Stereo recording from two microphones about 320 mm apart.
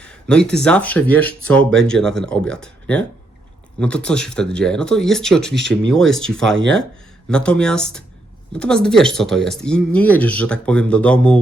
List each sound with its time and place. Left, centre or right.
0.0 s speech: centre
5.5 s speech: right
6.1 s speech: centre
6.6 s speech: right
7.3 s speech: centre